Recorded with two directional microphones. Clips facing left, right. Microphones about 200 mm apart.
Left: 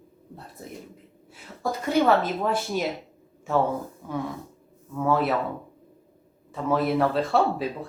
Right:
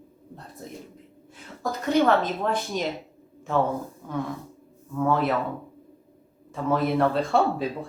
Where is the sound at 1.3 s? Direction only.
5° left (ahead or behind).